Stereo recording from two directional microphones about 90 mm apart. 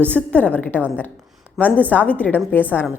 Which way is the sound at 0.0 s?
15° left (ahead or behind).